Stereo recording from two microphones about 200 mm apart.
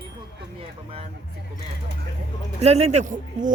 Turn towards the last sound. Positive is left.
turn(degrees=-40)  # may be behind; listen again after turning